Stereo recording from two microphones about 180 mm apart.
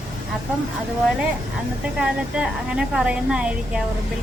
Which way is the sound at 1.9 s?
5° right (ahead or behind).